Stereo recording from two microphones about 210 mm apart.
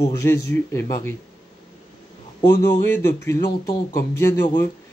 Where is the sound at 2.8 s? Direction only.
10° left (ahead or behind).